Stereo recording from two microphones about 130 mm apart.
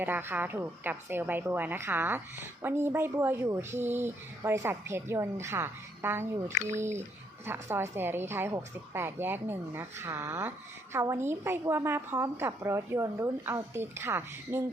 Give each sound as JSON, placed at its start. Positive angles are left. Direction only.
{"t": 0.0, "sound": "a woman's voice", "side_deg": -15}